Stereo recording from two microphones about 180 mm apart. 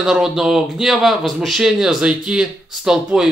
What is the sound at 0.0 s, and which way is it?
Speech, centre (ahead or behind).